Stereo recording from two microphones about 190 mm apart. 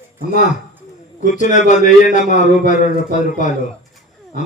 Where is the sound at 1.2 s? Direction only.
40° left (ahead or behind).